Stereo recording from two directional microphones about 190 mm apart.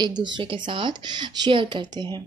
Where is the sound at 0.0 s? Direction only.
25° right (ahead or behind).